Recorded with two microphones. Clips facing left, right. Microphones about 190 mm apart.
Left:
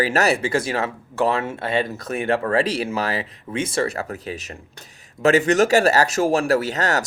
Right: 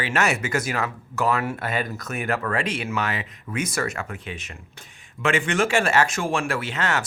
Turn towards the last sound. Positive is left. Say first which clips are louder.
# left 4 dB
turn(degrees=40)  # may be behind; listen again after turning